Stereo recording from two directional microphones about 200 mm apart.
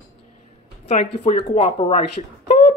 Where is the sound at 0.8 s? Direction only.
35° left (ahead or behind).